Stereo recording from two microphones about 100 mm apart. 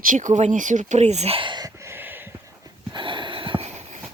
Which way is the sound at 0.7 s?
90° right.